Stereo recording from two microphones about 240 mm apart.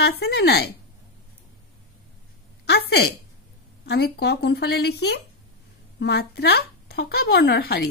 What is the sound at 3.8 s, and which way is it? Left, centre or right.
Speech, left.